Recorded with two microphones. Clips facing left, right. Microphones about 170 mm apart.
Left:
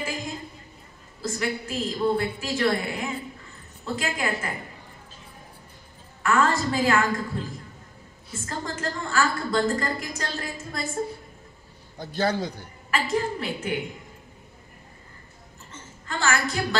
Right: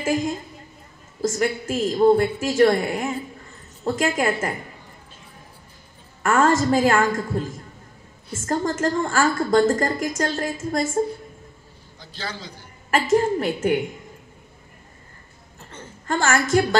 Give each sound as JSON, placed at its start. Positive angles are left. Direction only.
{"t": 1.2, "sound": "a woman's voice", "side_deg": -45}
{"t": 6.2, "sound": "a woman's voice", "side_deg": -45}
{"t": 8.5, "sound": "a woman's voice", "side_deg": -45}
{"t": 12.0, "sound": "a man's voice", "side_deg": 55}
{"t": 12.9, "sound": "a woman's voice", "side_deg": -45}
{"t": 15.7, "sound": "a sound", "side_deg": -45}